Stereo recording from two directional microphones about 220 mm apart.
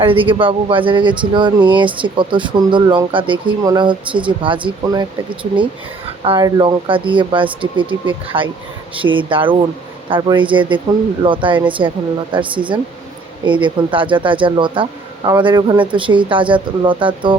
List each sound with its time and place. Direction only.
0.0 s speech: 25° right (ahead or behind)